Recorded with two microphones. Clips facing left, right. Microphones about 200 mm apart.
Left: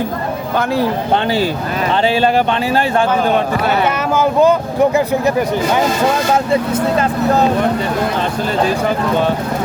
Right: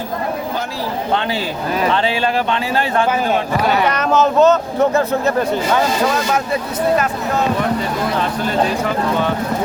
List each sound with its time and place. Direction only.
0.5 s speech: 60° left (ahead or behind)
2.1 s speech: 40° left (ahead or behind)
3.8 s speech: 10° left (ahead or behind)